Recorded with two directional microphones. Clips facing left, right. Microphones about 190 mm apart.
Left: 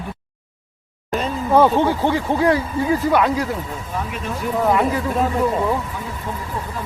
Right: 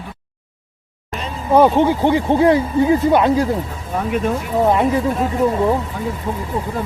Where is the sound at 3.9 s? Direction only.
50° right (ahead or behind).